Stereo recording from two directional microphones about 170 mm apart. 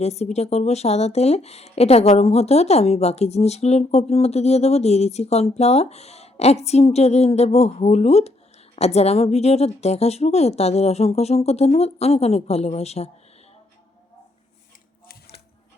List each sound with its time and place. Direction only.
0.0 s speech: 40° left (ahead or behind)